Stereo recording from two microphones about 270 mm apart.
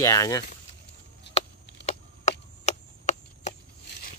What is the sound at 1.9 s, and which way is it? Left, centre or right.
Chop, left.